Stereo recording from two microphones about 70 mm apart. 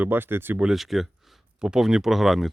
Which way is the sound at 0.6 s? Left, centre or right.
Centre.